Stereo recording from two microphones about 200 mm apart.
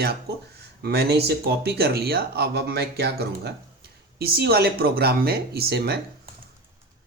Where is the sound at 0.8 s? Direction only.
55° right (ahead or behind).